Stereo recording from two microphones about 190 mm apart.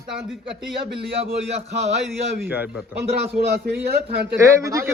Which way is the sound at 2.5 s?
10° right (ahead or behind).